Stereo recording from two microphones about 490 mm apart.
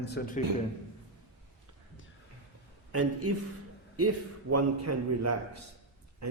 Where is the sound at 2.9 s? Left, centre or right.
Right.